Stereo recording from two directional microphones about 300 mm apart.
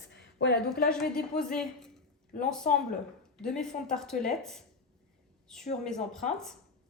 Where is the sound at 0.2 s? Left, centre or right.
Left.